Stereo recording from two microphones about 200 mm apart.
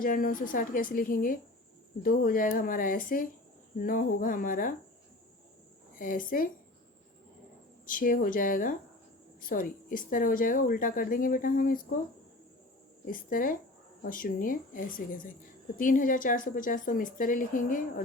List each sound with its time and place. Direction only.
0.0 s speech: 45° left (ahead or behind)
6.0 s speech: 45° left (ahead or behind)
7.9 s speech: 45° left (ahead or behind)
13.1 s speech: 45° left (ahead or behind)